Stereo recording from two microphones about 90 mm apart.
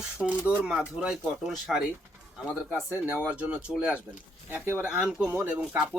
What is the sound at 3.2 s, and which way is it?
Speech, 10° right (ahead or behind).